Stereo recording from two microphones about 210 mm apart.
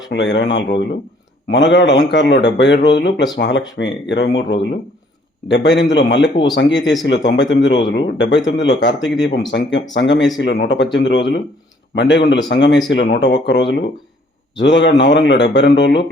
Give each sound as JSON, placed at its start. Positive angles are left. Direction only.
{"t": 0.1, "sound": "a man's voice", "side_deg": 60}